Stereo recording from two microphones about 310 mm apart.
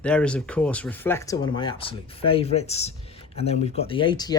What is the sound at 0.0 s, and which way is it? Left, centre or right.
Speech, centre.